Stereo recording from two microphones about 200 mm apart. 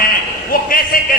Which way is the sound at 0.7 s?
45° left (ahead or behind).